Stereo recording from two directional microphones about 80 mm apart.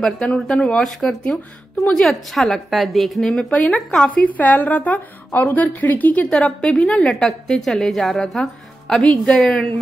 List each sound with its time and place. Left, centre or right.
0.0 s a woman's voice: centre